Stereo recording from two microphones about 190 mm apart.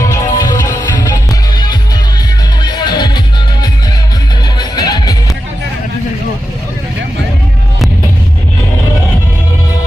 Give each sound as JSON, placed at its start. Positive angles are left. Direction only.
{"t": 0.0, "sound": "music", "side_deg": 15}
{"t": 4.5, "sound": "music", "side_deg": 20}